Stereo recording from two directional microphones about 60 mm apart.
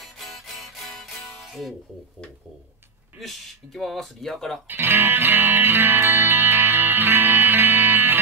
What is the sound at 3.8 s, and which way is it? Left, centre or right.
Speech, centre.